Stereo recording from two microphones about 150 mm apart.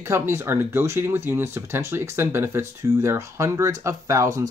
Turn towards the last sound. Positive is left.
turn(degrees=-20)  # may be behind; listen again after turning